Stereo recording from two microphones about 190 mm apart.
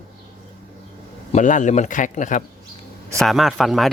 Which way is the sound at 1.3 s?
40° left (ahead or behind).